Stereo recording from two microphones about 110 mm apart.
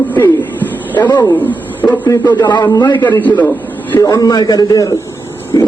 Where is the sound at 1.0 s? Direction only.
40° left (ahead or behind).